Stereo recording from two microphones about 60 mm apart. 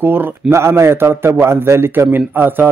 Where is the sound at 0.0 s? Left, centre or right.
Right.